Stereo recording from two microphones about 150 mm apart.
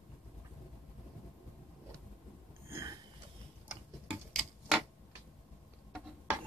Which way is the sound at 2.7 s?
20° right (ahead or behind).